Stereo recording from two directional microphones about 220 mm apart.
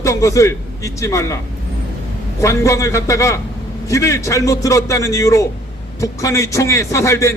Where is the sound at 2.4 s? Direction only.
15° left (ahead or behind).